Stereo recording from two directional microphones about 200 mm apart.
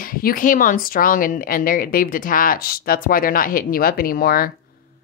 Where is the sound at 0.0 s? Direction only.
45° left (ahead or behind).